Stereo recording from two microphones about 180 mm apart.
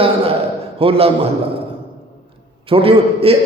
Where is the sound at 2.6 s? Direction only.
30° right (ahead or behind).